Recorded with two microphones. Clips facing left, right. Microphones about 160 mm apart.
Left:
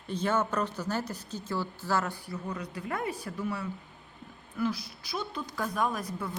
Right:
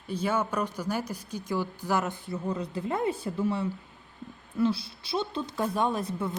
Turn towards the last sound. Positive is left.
turn(degrees=-25)  # may be behind; listen again after turning